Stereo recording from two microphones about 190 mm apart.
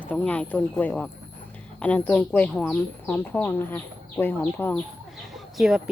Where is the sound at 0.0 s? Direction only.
5° left (ahead or behind).